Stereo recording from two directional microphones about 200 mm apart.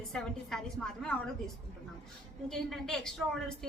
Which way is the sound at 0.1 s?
Centre (ahead or behind).